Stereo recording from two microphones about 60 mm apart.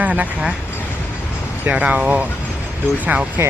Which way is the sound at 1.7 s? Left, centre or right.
Right.